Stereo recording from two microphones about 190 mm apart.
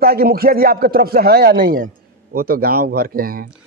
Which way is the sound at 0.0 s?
50° right (ahead or behind).